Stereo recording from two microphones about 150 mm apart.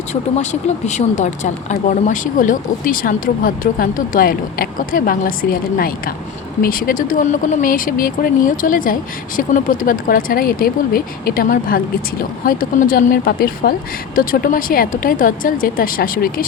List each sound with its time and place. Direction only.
0.9 s speech: 50° left (ahead or behind); by 16.3 s 75° left (ahead or behind)